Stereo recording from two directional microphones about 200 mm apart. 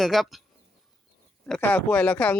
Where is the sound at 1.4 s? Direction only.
5° left (ahead or behind).